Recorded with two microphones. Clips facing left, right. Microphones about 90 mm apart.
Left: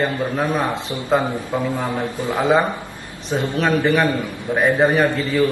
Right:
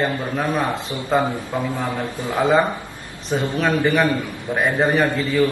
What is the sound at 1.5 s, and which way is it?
Speech, 20° left (ahead or behind).